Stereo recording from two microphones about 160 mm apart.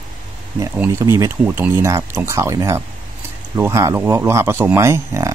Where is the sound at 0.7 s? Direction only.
15° right (ahead or behind).